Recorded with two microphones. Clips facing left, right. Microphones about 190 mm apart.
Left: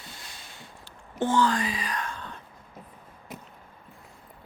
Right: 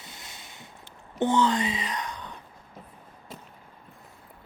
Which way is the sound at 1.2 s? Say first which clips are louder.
Right 1 dB; 20° right (ahead or behind).